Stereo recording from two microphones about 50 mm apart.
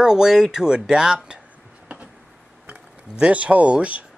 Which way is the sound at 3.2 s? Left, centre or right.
Right.